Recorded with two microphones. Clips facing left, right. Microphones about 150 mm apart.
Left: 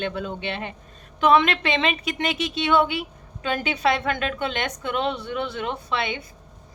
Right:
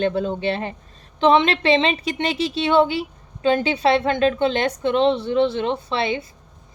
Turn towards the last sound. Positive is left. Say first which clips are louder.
# right 4 dB
turn(degrees=-30)  # may be behind; listen again after turning